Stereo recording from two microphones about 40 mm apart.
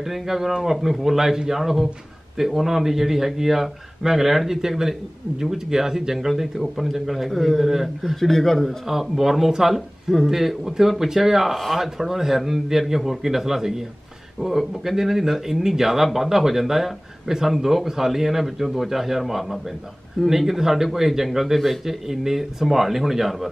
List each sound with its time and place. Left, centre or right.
0.0 s a man's voice: centre
8.8 s a man's voice: centre